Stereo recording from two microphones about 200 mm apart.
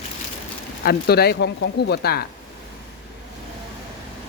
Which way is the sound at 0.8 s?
50° left (ahead or behind).